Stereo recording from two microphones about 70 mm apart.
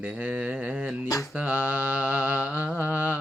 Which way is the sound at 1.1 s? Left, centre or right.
Left.